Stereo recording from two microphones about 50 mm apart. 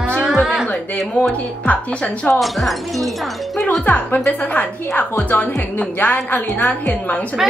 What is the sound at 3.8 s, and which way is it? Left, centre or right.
A woman's voice, left.